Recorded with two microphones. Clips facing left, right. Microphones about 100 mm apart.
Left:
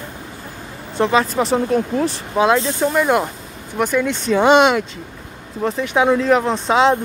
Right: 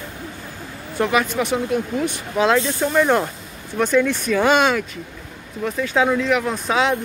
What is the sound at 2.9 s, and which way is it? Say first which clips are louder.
Speech: right 2 dB; 5° left (ahead or behind).